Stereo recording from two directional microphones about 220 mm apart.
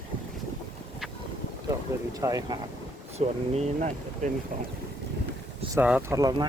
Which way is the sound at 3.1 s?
30° right (ahead or behind).